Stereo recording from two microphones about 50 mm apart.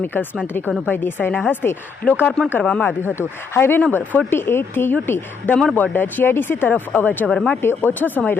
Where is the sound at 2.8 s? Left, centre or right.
Left.